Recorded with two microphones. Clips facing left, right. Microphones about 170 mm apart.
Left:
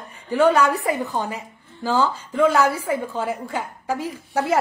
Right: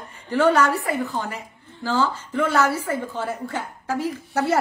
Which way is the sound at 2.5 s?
15° left (ahead or behind).